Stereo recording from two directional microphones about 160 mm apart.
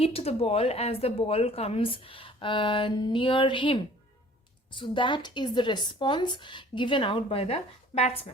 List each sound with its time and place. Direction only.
0.0 s a woman's voice: 40° left (ahead or behind)